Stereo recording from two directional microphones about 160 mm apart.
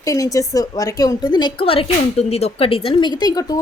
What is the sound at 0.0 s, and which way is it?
A woman's voice, 20° left (ahead or behind).